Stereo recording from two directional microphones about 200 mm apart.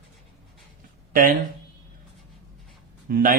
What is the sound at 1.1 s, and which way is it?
Speech, 45° right (ahead or behind).